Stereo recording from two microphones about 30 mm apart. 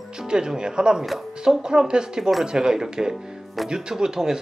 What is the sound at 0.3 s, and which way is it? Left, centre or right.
A woman's voice, right.